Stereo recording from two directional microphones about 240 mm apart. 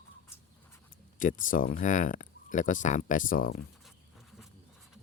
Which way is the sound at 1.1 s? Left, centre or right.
Left.